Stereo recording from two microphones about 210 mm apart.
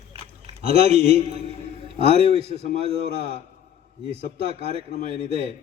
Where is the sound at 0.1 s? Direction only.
30° right (ahead or behind).